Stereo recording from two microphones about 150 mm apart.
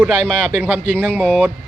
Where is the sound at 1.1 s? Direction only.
5° left (ahead or behind).